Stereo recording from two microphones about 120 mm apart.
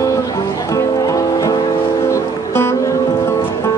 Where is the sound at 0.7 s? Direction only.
30° left (ahead or behind).